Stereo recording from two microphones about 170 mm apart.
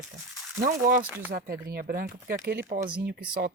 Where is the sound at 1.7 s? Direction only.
60° right (ahead or behind).